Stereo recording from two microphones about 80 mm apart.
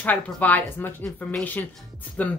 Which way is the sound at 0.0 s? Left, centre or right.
Left.